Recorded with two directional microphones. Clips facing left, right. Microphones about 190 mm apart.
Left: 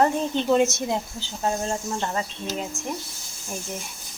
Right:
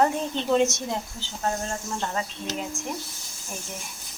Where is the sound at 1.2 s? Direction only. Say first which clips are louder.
Left 2 dB; 15° left (ahead or behind).